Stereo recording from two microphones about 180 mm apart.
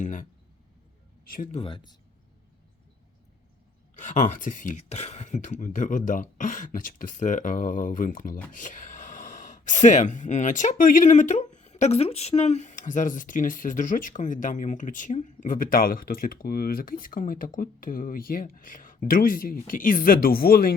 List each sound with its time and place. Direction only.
0.0 s speech: 45° left (ahead or behind)
1.3 s speech: 50° left (ahead or behind)
1.5 s speech: 30° left (ahead or behind)
3.9 s speech: 40° left (ahead or behind)